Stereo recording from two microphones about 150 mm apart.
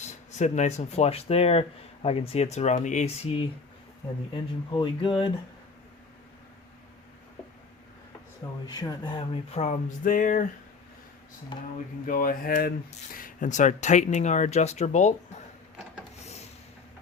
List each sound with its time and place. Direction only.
0.0 s speech: 50° left (ahead or behind)
4.4 s speech: 35° left (ahead or behind)
8.6 s speech: 25° left (ahead or behind); by 9.7 s 45° left (ahead or behind)
10.0 s a sound: 65° left (ahead or behind)
11.5 s speech: 30° left (ahead or behind)
12.0 s speech: 70° left (ahead or behind)
13.1 s speech: 65° left (ahead or behind)
16.2 s a sound: 45° left (ahead or behind)